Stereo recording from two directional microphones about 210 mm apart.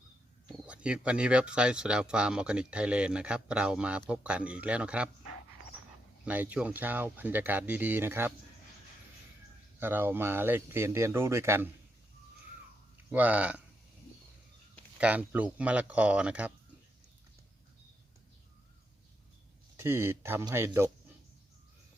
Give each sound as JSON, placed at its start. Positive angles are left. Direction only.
{"t": 0.4, "sound": "speech", "side_deg": -5}
{"t": 6.2, "sound": "speech", "side_deg": -5}
{"t": 9.8, "sound": "speech", "side_deg": -10}
{"t": 13.1, "sound": "speech", "side_deg": -5}
{"t": 14.9, "sound": "speech", "side_deg": -5}
{"t": 19.7, "sound": "speech", "side_deg": -10}